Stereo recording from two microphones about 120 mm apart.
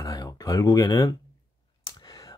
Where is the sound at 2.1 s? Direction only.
30° left (ahead or behind).